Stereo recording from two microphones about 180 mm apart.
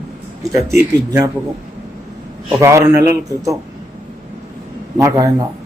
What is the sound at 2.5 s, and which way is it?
A man's voice, 15° right (ahead or behind).